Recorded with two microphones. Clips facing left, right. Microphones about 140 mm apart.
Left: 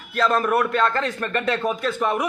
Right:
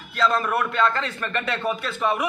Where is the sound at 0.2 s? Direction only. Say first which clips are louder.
Left 3 dB; 45° left (ahead or behind).